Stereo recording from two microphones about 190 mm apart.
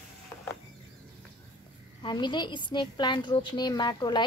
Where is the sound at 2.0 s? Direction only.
25° left (ahead or behind).